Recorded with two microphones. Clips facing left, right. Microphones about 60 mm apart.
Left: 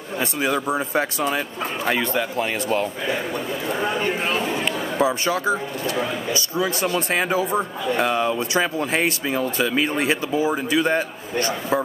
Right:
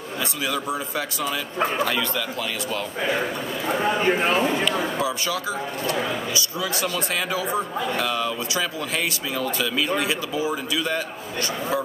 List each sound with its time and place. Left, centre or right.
0.2 s speech: left
4.6 s speech: left